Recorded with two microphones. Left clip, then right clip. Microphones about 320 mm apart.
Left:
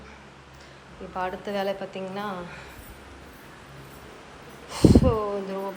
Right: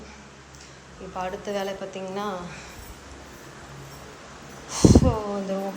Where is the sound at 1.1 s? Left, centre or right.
Centre.